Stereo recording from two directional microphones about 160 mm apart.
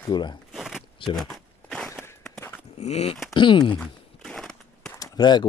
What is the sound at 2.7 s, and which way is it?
Speech, 40° left (ahead or behind).